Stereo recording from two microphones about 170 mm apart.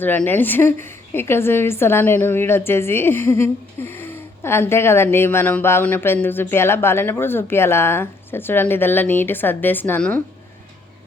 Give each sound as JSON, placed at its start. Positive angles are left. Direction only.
{"t": 0.0, "sound": "a woman's voice", "side_deg": 10}